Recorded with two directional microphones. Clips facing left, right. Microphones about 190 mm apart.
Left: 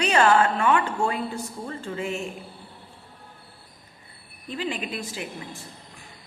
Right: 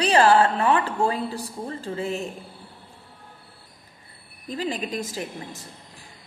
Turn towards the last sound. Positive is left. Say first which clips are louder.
# right 2 dB
turn(degrees=-40)  # may be behind; listen again after turning